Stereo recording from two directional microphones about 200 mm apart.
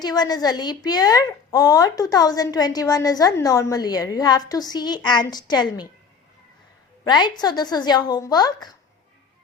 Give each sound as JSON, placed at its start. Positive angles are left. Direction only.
{"t": 0.0, "sound": "a woman's voice", "side_deg": 20}
{"t": 7.0, "sound": "a woman's voice", "side_deg": 20}